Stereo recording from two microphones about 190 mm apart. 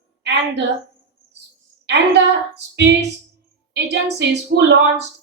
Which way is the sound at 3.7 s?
65° right (ahead or behind).